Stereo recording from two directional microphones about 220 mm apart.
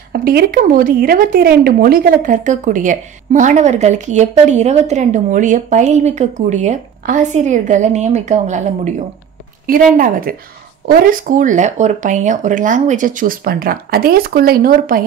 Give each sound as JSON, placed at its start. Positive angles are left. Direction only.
{"t": 0.1, "sound": "speech", "side_deg": -45}
{"t": 9.9, "sound": "speech", "side_deg": -40}